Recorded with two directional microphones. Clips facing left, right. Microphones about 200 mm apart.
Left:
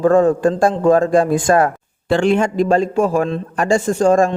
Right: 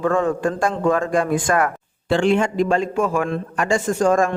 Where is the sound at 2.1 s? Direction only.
45° left (ahead or behind).